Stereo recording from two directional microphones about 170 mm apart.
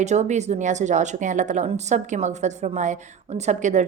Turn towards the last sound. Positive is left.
turn(degrees=-45)  # may be behind; listen again after turning